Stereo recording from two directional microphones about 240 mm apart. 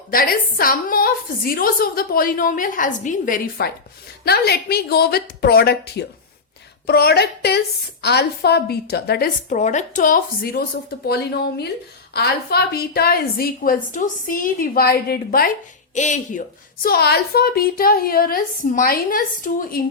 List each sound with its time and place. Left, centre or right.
0.1 s a woman's voice: left
16.8 s a woman's voice: left